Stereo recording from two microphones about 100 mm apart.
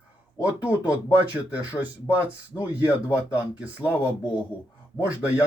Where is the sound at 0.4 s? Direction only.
15° right (ahead or behind).